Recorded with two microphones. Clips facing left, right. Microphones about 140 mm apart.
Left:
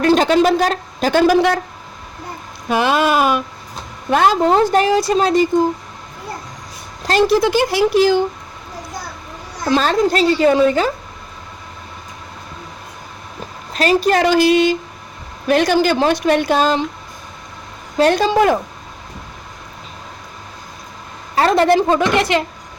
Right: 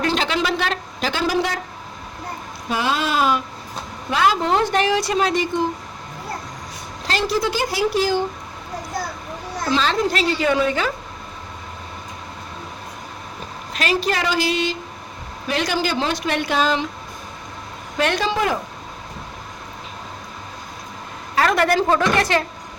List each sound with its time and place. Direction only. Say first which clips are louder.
0.0 s a woman's voice: left 9 dB; 45° left (ahead or behind)
1.3 s speech: left 8 dB; 65° left (ahead or behind)
2.6 s speech: left 7 dB; 65° left (ahead or behind)
4.1 s speech: left 5 dB; 45° left (ahead or behind)
7.1 s a woman's voice: left 9 dB; 50° left (ahead or behind)
7.4 s speech: left 6 dB; 70° left (ahead or behind)
9.6 s speech: left 5 dB; 50° left (ahead or behind)
13.7 s a woman's voice: left 7 dB; 45° left (ahead or behind)
16.2 s a woman's voice: left 6 dB; 45° left (ahead or behind)
17.9 s a woman's voice: left 7 dB; 35° left (ahead or behind)
21.3 s a woman's voice: left 5 dB; 30° left (ahead or behind)